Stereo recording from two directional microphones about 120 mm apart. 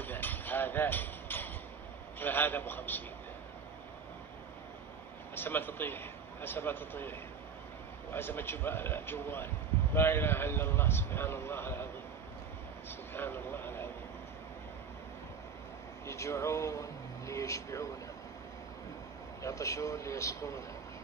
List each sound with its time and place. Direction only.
0.0 s music: 15° left (ahead or behind)
2.1 s speech: 15° left (ahead or behind)
5.3 s a man's voice: 15° left (ahead or behind)
13.1 s a sound: 15° left (ahead or behind)
16.1 s a man's voice: 25° left (ahead or behind)
19.4 s a man's voice: 25° left (ahead or behind)